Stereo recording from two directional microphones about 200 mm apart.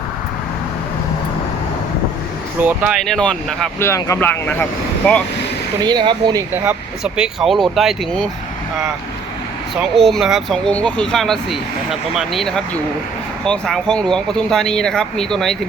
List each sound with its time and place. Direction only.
2.6 s speech: 5° right (ahead or behind)
5.8 s speech: 20° right (ahead or behind)
6.5 s speech: 10° right (ahead or behind)
9.7 s speech: centre (ahead or behind)